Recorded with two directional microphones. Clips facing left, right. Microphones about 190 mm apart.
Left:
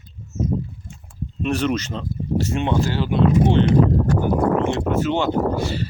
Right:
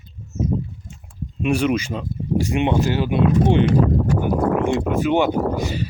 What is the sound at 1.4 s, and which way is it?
Speech, 10° right (ahead or behind).